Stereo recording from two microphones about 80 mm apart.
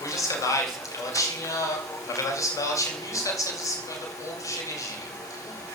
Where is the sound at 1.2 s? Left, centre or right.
Left.